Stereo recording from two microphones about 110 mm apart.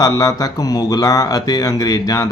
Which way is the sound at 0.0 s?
35° left (ahead or behind).